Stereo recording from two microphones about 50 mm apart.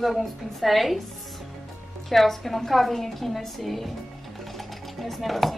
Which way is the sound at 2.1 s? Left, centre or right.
Centre.